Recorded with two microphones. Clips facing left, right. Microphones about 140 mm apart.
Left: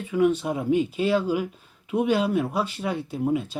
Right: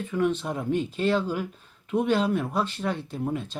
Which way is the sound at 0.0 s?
10° left (ahead or behind).